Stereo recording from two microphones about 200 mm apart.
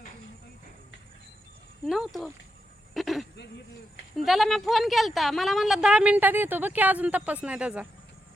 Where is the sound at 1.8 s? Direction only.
Centre (ahead or behind).